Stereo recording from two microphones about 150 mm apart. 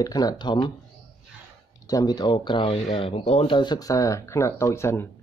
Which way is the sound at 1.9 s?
25° left (ahead or behind).